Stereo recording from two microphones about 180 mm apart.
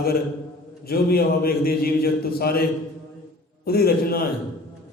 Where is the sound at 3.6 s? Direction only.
60° left (ahead or behind).